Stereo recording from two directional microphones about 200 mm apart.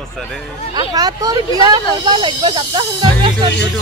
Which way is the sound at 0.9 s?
20° right (ahead or behind).